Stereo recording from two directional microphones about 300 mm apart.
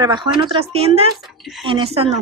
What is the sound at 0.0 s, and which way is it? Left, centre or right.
A woman's voice, centre.